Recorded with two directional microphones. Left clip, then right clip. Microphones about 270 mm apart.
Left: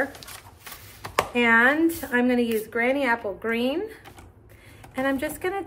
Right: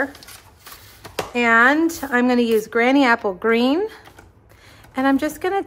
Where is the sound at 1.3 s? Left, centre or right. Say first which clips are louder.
Right 5 dB; centre.